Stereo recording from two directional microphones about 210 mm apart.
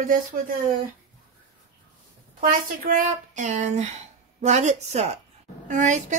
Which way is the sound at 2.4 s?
40° right (ahead or behind).